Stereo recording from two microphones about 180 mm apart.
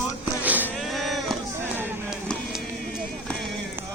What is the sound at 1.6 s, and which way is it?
Music, 10° right (ahead or behind).